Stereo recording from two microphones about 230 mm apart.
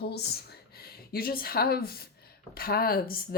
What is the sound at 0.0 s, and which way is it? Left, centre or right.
A woman's voice, left.